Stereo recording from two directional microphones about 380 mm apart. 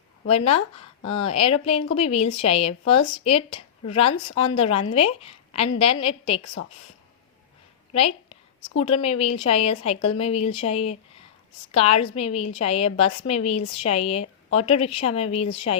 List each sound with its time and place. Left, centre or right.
0.3 s a woman's voice: centre
7.9 s a woman's voice: centre